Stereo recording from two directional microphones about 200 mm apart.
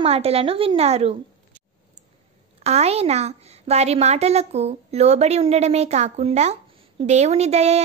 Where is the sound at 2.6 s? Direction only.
30° right (ahead or behind).